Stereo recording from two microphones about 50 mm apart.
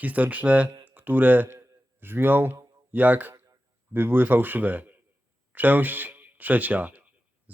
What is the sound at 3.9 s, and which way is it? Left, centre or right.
Speech, right.